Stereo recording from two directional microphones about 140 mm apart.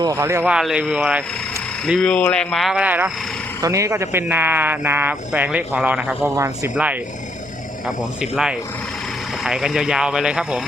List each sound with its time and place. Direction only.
0.0 s speech: 20° right (ahead or behind)
0.5 s speech: 5° right (ahead or behind)
1.9 s speech: 5° left (ahead or behind); by 3.1 s 10° right (ahead or behind)
3.6 s speech: 20° right (ahead or behind)
6.3 s speech: 20° right (ahead or behind)
7.9 s speech: 5° right (ahead or behind)